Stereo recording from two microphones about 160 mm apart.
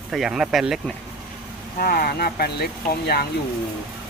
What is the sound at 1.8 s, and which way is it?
Speech, 65° left (ahead or behind).